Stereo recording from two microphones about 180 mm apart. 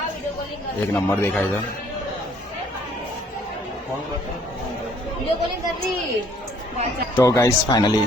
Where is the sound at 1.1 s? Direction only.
10° left (ahead or behind).